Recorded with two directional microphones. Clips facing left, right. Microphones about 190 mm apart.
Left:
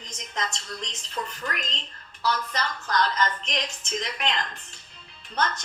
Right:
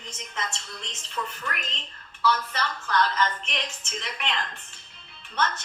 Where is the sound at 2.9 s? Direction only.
40° left (ahead or behind).